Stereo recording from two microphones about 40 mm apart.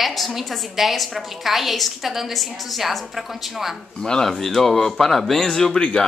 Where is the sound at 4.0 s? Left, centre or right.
Centre.